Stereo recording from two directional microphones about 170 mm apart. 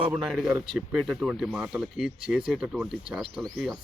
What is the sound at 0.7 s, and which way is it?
Speech, centre (ahead or behind).